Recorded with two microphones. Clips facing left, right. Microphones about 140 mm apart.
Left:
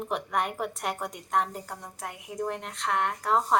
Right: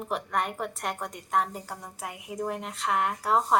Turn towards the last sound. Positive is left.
turn(degrees=-5)  # may be behind; listen again after turning